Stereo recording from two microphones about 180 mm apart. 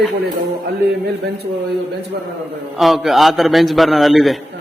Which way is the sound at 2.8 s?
Centre (ahead or behind).